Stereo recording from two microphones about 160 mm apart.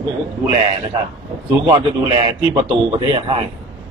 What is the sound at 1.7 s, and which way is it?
A man's voice, 30° right (ahead or behind).